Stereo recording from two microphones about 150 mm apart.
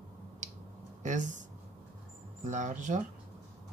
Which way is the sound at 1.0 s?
55° right (ahead or behind).